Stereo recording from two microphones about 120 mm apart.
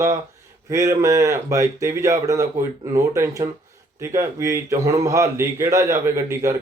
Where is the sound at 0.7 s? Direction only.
25° right (ahead or behind).